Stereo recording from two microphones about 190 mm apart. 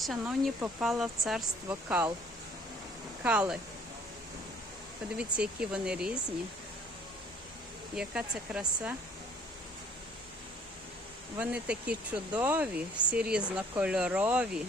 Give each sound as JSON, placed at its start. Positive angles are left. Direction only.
{"t": 0.0, "sound": "speech", "side_deg": 0}
{"t": 3.2, "sound": "speech", "side_deg": -5}
{"t": 5.1, "sound": "speech", "side_deg": -5}
{"t": 7.9, "sound": "speech", "side_deg": -5}
{"t": 11.3, "sound": "speech", "side_deg": -5}